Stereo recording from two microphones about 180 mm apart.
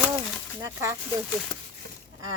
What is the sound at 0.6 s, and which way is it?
Speech, 15° right (ahead or behind).